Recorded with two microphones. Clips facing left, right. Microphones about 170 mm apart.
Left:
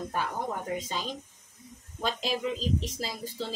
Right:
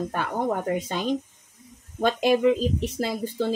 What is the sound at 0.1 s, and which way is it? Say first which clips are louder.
Speech: right 6 dB; 60° right (ahead or behind).